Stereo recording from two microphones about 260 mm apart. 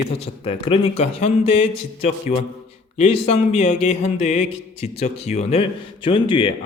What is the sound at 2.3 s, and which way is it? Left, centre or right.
Speech, left.